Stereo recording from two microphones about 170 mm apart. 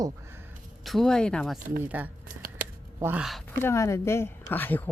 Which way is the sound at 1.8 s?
10° right (ahead or behind).